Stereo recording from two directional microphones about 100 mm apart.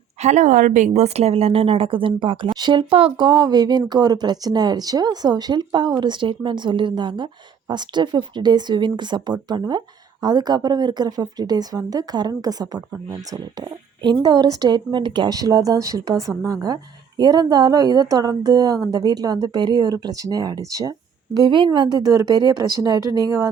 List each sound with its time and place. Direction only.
0.2 s a sound: 90° right
0.9 s speech: 90° right; by 2.8 s 45° right (ahead or behind)
2.9 s speech: 70° right (ahead or behind)
3.2 s a woman's voice: 45° right (ahead or behind)
14.0 s speech: 45° right (ahead or behind)
15.4 s a woman's voice: 35° right (ahead or behind)
21.4 s speech: 55° right (ahead or behind)
22.0 s a woman's voice: 35° right (ahead or behind)